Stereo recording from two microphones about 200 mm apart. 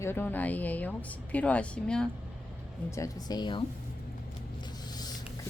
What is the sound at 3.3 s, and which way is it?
Speech, 20° left (ahead or behind).